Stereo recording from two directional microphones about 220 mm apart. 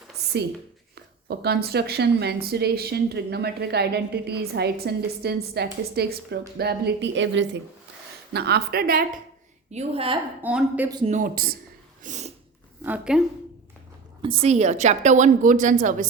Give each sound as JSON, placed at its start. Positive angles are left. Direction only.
{"t": 0.3, "sound": "a woman's voice", "side_deg": -50}
{"t": 9.7, "sound": "a woman's voice", "side_deg": -25}
{"t": 10.4, "sound": "a woman's voice", "side_deg": -5}
{"t": 10.8, "sound": "a woman's voice", "side_deg": -20}
{"t": 11.1, "sound": "a woman's voice", "side_deg": -40}
{"t": 12.8, "sound": "a woman's voice", "side_deg": -5}
{"t": 14.2, "sound": "a woman's voice", "side_deg": -25}